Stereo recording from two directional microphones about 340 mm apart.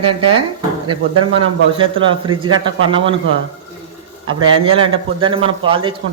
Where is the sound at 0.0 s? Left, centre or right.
Centre.